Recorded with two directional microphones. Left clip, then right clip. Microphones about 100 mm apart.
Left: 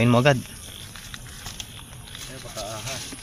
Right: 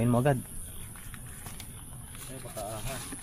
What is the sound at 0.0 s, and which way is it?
Speech, 35° left (ahead or behind).